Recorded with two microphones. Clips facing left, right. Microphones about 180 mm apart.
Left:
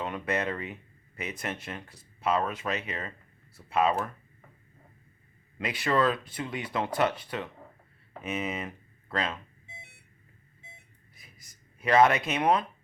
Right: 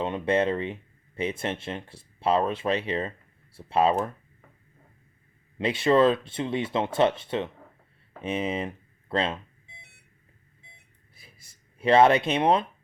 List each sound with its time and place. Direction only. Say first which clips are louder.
0.0 s speech: right 6 dB; 25° right (ahead or behind)
5.5 s speech: right 6 dB; 25° right (ahead or behind)
11.1 s a sound: right 2 dB; 30° right (ahead or behind)